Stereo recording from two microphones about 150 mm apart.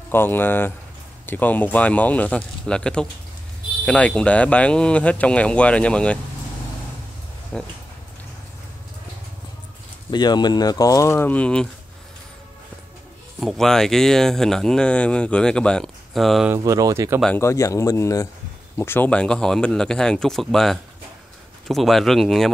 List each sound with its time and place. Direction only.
0.1 s speech: 15° left (ahead or behind)
7.5 s speech: 5° left (ahead or behind)
10.1 s speech: 30° left (ahead or behind); by 11.6 s 10° left (ahead or behind)
13.4 s speech: centre (ahead or behind)
16.4 s speech: 20° right (ahead or behind)
17.4 s speech: 20° left (ahead or behind); by 22.5 s centre (ahead or behind)